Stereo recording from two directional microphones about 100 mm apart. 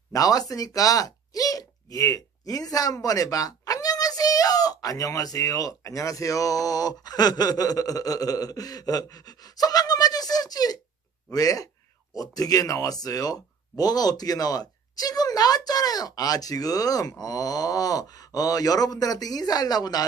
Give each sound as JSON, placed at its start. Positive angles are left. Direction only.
{"t": 0.1, "sound": "speech", "side_deg": 35}